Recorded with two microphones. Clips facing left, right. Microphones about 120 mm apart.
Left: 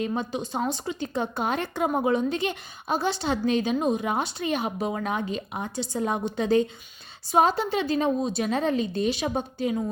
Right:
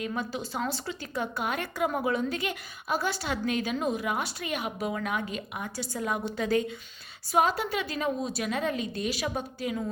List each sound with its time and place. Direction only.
0.0 s a woman's voice: 25° left (ahead or behind)